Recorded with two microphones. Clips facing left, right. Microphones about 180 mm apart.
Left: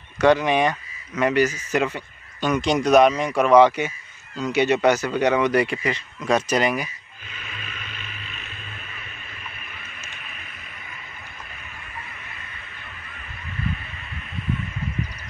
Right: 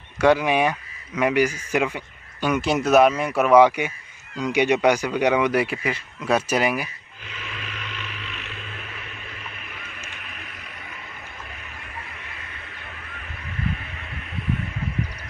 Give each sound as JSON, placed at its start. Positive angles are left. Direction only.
{"t": 0.2, "sound": "speech", "side_deg": -10}
{"t": 7.3, "sound": "vehicle", "side_deg": -75}